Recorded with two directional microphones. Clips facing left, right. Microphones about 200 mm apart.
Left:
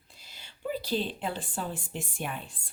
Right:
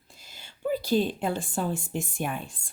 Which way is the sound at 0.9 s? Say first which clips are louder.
Right 7 dB; 45° right (ahead or behind).